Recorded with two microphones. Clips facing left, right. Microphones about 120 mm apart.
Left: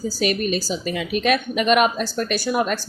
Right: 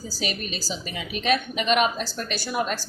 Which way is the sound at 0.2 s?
50° left (ahead or behind).